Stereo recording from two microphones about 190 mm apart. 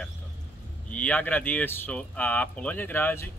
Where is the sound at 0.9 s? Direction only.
5° left (ahead or behind).